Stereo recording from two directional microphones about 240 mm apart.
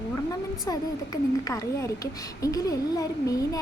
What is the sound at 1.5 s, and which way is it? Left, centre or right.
A woman's voice, centre.